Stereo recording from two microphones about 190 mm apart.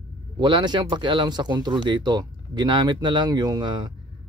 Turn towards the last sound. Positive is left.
turn(degrees=-20)  # may be behind; listen again after turning